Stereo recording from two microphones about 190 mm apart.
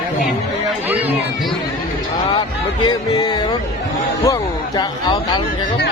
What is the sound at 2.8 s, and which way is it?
Music, 20° left (ahead or behind).